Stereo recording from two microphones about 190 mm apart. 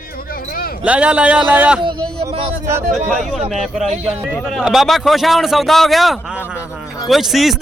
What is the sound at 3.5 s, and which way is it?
A man's voice, centre (ahead or behind).